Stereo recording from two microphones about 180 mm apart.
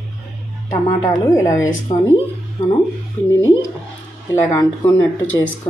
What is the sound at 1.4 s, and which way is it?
Speech, 20° left (ahead or behind).